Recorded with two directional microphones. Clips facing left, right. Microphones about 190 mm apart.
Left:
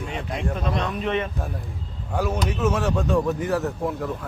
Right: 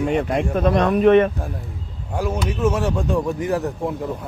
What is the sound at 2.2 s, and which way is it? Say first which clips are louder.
Speech: right 2 dB; 10° right (ahead or behind).